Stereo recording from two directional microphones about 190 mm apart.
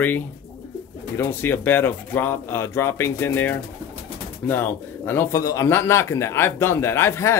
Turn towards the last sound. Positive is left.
turn(degrees=15)  # may be behind; listen again after turning